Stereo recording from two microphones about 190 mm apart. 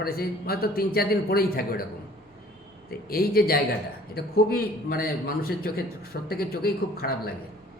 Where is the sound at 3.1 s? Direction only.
50° left (ahead or behind).